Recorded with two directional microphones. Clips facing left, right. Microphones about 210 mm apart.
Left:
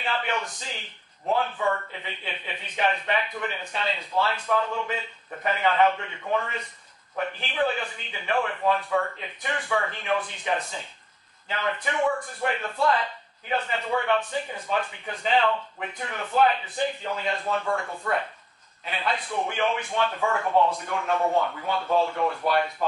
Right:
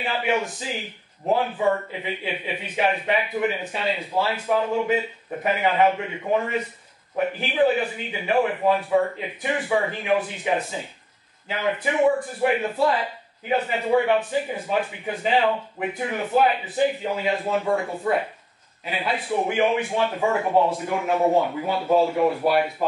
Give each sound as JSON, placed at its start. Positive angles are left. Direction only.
{"t": 0.0, "sound": "a man's voice", "side_deg": -10}
{"t": 17.6, "sound": "a man's voice", "side_deg": -20}
{"t": 18.1, "sound": "a man's voice", "side_deg": -10}
{"t": 20.8, "sound": "a man's voice", "side_deg": -10}